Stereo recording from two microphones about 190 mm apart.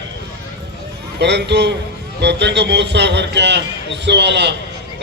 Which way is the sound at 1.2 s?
65° right (ahead or behind).